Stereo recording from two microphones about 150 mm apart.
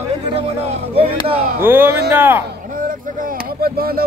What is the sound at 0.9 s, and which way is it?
Speech, 40° right (ahead or behind).